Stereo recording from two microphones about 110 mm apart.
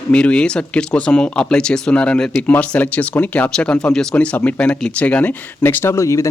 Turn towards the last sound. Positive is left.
turn(degrees=30)  # may be behind; listen again after turning